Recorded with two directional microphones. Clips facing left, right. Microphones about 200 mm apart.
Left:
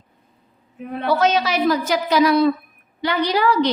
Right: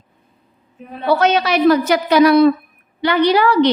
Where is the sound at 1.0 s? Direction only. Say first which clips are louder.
Right 3 dB; 65° right (ahead or behind).